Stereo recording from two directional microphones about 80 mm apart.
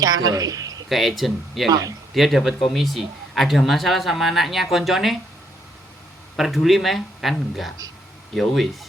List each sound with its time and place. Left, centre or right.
0.0 s speech: right
0.9 s speech: centre
6.3 s speech: centre